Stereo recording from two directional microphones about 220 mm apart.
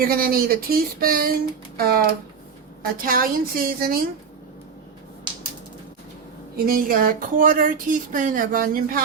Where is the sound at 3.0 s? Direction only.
40° right (ahead or behind).